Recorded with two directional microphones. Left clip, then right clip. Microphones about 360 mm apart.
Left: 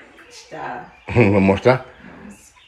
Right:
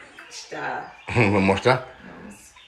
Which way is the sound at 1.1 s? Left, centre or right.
Centre.